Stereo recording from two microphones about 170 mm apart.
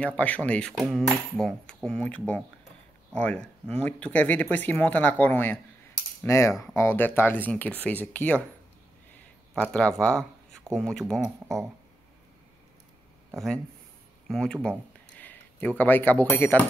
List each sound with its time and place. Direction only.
0.0 s speech: 10° left (ahead or behind)
9.6 s speech: 5° left (ahead or behind)
14.2 s a sound: 5° left (ahead or behind)
15.8 s speech: 10° left (ahead or behind)